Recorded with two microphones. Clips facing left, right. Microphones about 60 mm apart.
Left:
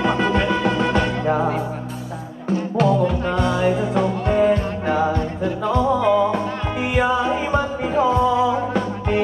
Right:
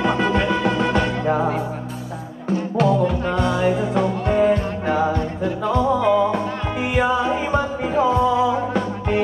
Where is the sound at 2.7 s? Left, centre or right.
Centre.